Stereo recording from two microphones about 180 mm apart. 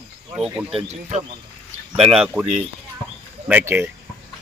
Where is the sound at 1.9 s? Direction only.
5° right (ahead or behind).